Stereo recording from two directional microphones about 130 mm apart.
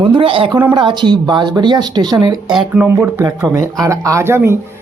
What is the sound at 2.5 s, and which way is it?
Speech, 5° right (ahead or behind).